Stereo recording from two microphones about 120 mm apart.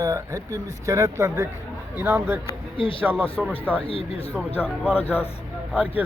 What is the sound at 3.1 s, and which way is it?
Speech, 10° left (ahead or behind).